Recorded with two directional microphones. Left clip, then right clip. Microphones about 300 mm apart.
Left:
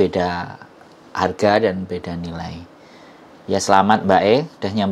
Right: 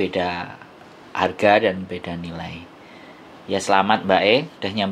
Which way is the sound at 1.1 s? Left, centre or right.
Left.